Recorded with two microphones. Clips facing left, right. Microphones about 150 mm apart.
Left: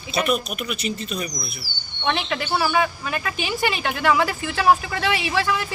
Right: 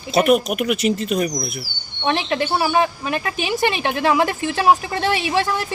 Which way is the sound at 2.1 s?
35° right (ahead or behind).